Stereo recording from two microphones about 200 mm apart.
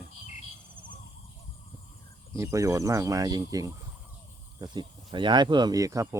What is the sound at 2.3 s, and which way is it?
Speech, 15° right (ahead or behind).